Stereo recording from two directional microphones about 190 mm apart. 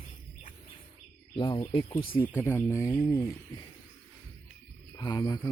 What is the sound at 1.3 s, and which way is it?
Speech, 25° left (ahead or behind).